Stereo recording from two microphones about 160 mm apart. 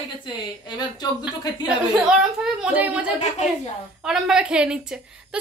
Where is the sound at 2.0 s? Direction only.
5° right (ahead or behind).